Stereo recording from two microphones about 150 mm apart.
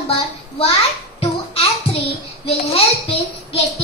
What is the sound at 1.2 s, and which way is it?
Music, 40° left (ahead or behind).